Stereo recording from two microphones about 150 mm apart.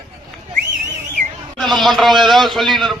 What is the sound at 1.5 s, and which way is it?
A man's voice, centre (ahead or behind).